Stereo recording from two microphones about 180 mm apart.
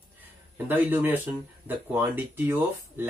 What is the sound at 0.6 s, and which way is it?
Speech, 10° right (ahead or behind).